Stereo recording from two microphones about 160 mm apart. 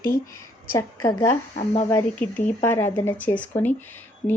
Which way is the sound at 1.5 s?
40° left (ahead or behind).